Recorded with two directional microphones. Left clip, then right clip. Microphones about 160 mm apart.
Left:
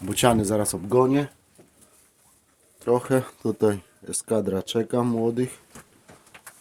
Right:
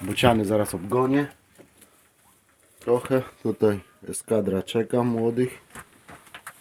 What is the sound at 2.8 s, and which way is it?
Speech, 30° left (ahead or behind).